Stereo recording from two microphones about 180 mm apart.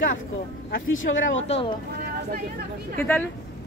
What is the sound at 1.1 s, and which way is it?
Speech, 65° left (ahead or behind).